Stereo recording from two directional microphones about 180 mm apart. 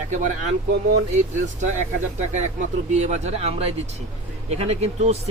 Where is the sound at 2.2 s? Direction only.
40° right (ahead or behind).